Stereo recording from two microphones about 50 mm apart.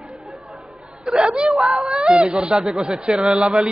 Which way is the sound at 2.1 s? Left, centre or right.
Right.